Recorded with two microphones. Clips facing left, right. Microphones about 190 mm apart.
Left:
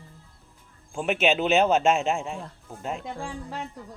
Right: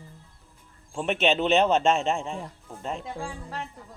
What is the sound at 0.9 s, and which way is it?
A man's voice, 5° left (ahead or behind).